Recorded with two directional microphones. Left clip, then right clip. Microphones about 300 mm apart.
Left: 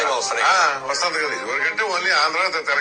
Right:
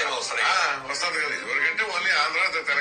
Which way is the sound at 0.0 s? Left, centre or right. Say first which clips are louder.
Left 5 dB; centre.